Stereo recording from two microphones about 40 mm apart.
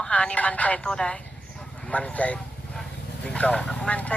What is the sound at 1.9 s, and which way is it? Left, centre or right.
Speech, left.